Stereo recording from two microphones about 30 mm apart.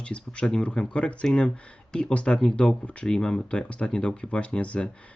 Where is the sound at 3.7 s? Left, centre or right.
Left.